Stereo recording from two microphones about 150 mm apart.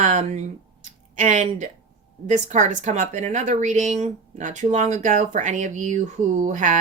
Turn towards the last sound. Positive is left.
turn(degrees=-55)  # may be behind; listen again after turning